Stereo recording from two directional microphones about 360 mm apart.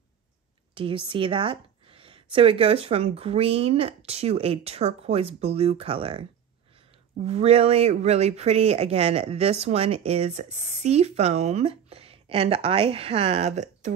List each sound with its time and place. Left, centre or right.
0.7 s a sound: centre
2.3 s speech: centre
7.2 s speech: centre